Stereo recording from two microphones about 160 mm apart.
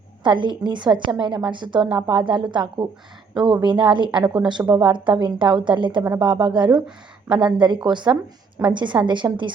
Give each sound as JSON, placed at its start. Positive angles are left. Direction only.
{"t": 0.2, "sound": "a woman's voice", "side_deg": -30}
{"t": 9.2, "sound": "a woman's voice", "side_deg": -15}